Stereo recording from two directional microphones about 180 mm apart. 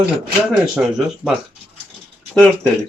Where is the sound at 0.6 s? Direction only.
Centre (ahead or behind).